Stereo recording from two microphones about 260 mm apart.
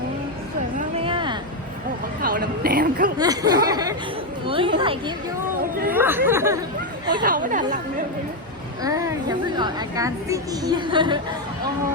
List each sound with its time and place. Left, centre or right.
0.9 s a sound: centre
2.2 s a woman's voice: right
3.2 s a woman's voice: centre
7.2 s speech: right
8.8 s a woman's voice: centre